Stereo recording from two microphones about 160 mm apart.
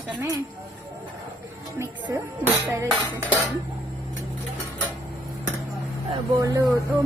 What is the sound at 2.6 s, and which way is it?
Speech, 15° right (ahead or behind).